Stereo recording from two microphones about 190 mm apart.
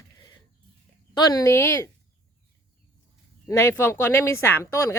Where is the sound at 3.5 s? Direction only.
15° left (ahead or behind).